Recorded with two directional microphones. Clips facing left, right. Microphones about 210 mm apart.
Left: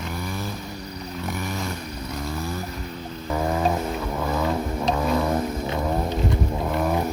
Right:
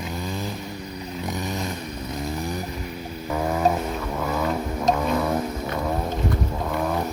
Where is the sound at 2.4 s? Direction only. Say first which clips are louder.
Right 1 dB; 15° right (ahead or behind).